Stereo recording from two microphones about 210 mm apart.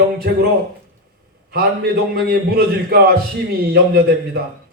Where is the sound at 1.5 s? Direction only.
50° right (ahead or behind).